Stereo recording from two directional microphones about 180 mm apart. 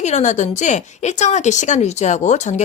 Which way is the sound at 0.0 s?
40° left (ahead or behind).